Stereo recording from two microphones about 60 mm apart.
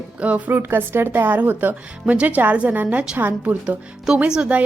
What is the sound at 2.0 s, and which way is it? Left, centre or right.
A woman's voice, right.